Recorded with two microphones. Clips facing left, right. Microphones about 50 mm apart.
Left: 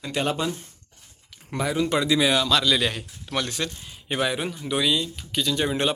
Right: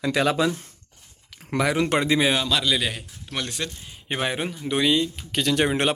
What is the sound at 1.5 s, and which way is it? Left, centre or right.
Speech, right.